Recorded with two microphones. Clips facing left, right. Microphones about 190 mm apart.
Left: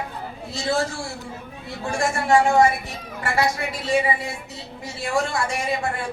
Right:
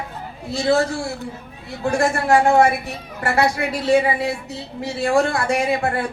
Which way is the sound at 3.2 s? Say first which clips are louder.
Right 4 dB; 65° right (ahead or behind).